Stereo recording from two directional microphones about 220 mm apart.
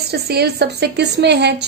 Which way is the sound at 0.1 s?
45° right (ahead or behind).